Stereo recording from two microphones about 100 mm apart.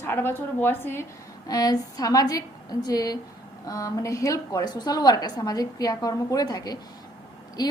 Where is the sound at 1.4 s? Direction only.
40° left (ahead or behind).